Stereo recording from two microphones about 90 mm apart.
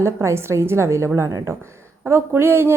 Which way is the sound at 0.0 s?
30° right (ahead or behind).